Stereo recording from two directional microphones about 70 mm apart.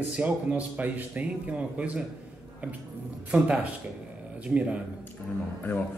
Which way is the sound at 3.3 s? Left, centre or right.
Right.